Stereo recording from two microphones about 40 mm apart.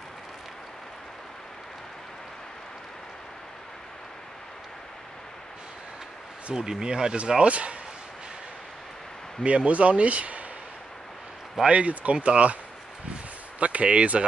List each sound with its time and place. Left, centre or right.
6.5 s speech: centre
7.4 s speech: right
9.4 s speech: right
11.6 s speech: right
13.6 s speech: right